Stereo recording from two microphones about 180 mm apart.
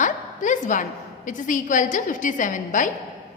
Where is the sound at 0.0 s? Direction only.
45° left (ahead or behind).